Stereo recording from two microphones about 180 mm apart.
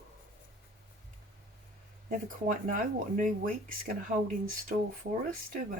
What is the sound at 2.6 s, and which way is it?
Speech, 45° right (ahead or behind).